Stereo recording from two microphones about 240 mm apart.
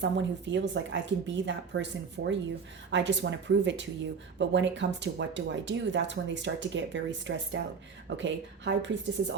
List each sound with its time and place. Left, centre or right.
0.0 s speech: right